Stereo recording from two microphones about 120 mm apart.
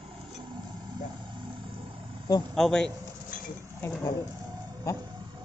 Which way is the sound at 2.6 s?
5° left (ahead or behind).